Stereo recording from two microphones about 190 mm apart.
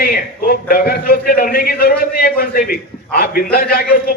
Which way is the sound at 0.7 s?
50° left (ahead or behind).